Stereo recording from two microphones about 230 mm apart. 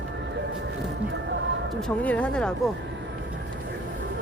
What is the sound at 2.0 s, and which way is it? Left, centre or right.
Speech, centre.